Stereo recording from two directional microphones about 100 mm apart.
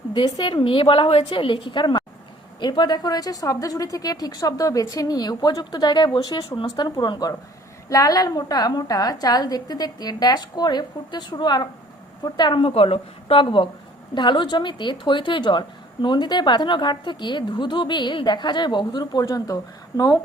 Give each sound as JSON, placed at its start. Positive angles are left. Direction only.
{"t": 0.3, "sound": "a woman's voice", "side_deg": 45}
{"t": 0.5, "sound": "a woman's voice", "side_deg": 60}
{"t": 19.2, "sound": "a woman's voice", "side_deg": 35}